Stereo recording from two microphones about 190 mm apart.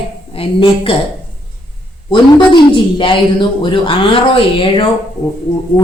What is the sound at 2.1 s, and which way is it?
A woman's voice, 25° left (ahead or behind).